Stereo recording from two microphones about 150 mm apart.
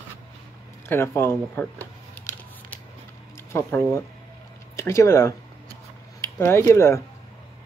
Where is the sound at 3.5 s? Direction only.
15° left (ahead or behind).